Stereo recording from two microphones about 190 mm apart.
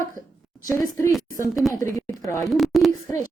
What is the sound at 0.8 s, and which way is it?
Speech, 15° left (ahead or behind).